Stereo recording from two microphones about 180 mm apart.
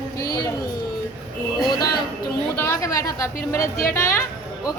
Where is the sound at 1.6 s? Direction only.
25° left (ahead or behind).